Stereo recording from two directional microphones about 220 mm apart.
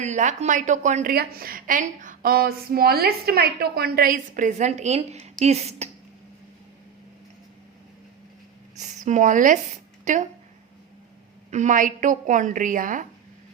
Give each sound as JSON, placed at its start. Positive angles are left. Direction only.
{"t": 0.0, "sound": "a woman's voice", "side_deg": -35}
{"t": 8.7, "sound": "speech", "side_deg": -35}
{"t": 11.5, "sound": "a woman's voice", "side_deg": -35}